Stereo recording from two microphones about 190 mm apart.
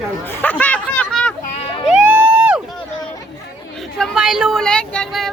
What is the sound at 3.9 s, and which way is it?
Speech, centre (ahead or behind).